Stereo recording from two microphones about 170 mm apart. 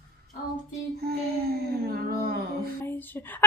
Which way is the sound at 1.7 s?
65° right (ahead or behind).